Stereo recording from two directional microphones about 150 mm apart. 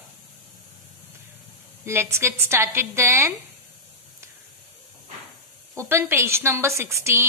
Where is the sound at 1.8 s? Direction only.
15° right (ahead or behind).